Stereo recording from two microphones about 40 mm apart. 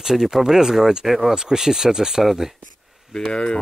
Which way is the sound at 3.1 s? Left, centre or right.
Left.